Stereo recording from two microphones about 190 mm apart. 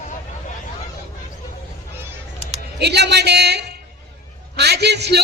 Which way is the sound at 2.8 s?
60° right (ahead or behind).